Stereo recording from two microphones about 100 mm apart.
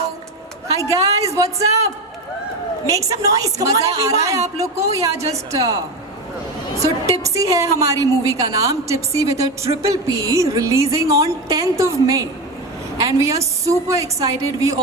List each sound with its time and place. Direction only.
0.8 s a woman's voice: 35° right (ahead or behind)
2.9 s a woman's voice: 30° right (ahead or behind)
7.3 s a woman's voice: 30° right (ahead or behind)